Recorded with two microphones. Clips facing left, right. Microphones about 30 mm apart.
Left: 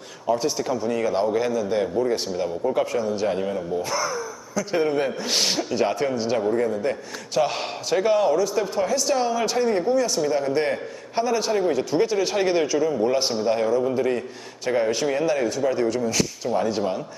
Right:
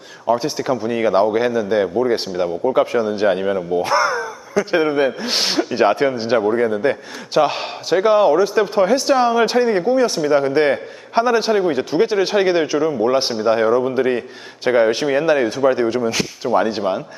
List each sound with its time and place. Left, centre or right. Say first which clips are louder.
0.3 s a man's voice: right 5 dB; right
7.3 s speech: right 6 dB; right